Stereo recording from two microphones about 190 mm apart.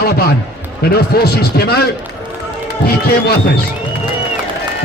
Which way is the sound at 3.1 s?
55° left (ahead or behind).